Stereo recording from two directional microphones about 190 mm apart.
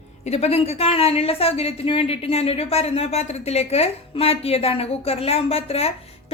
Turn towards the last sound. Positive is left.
turn(degrees=30)  # may be behind; listen again after turning